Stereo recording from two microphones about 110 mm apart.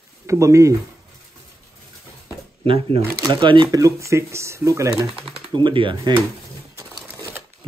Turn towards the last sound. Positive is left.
turn(degrees=-30)  # may be behind; listen again after turning